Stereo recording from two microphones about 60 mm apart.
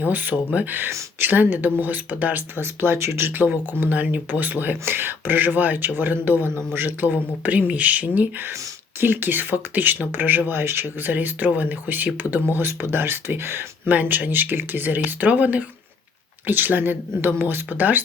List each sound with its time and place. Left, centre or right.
0.0 s speech: right
3.7 s speech: right
6.5 s a man's voice: centre
6.7 s speech: right
7.1 s speech: right
12.5 s speech: right
16.5 s speech: right
17.7 s speech: right